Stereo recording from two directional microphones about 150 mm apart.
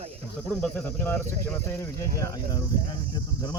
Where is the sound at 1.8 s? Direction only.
25° left (ahead or behind).